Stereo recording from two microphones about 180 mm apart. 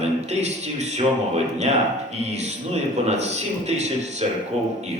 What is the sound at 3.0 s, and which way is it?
Speech, 35° right (ahead or behind).